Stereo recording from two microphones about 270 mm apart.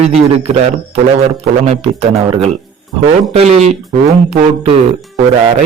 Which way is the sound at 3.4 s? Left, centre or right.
Right.